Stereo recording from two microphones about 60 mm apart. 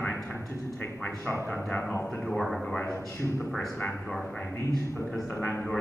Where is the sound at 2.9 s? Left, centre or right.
Left.